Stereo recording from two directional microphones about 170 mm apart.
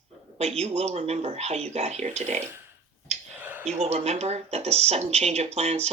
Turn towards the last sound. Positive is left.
turn(degrees=-40)  # may be behind; listen again after turning